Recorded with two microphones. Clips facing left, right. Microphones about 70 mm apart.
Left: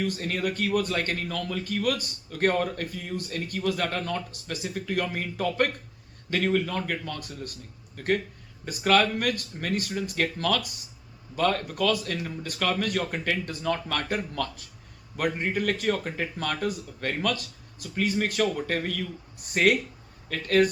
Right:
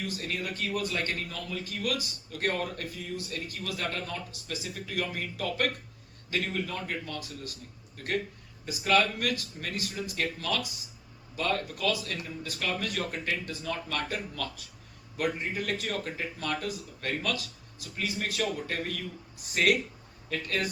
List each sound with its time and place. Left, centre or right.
0.2 s speech: left
6.3 s speech: left
7.9 s speech: left
11.3 s speech: left
19.6 s speech: left
20.3 s speech: left